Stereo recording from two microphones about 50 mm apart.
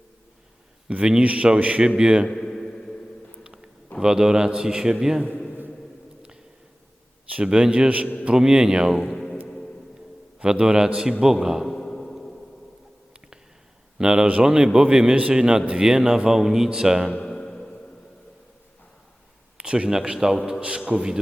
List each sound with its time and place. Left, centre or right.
0.9 s speech: right
2.0 s a man's voice: centre
2.3 s a sound: centre
3.4 s a sound: centre
4.0 s a man's voice: centre
7.3 s a man's voice: right
9.0 s music: centre
10.4 s a man's voice: centre
11.7 s a sound: centre
14.0 s a man's voice: centre
17.2 s music: centre
19.5 s a man's voice: centre